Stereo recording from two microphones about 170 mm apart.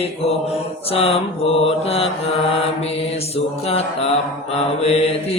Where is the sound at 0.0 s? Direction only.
35° left (ahead or behind).